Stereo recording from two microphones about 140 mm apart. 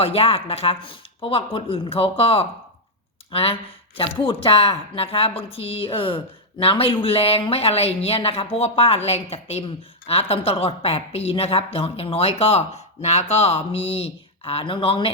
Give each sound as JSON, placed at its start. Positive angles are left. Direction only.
{"t": 0.0, "sound": "a woman's voice", "side_deg": 45}